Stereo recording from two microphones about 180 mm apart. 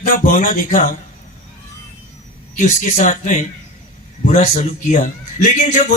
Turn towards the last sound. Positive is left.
turn(degrees=40)  # may be behind; listen again after turning